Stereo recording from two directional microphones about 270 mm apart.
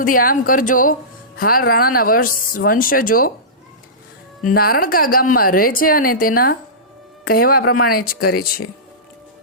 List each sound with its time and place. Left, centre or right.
0.0 s speech: left
4.4 s speech: left